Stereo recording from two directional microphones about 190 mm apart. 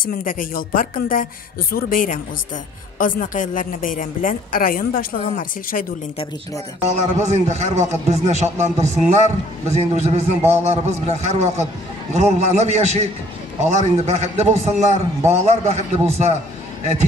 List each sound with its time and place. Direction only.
0.0 s a woman's voice: 50° left (ahead or behind)
6.9 s a man's voice: 35° right (ahead or behind)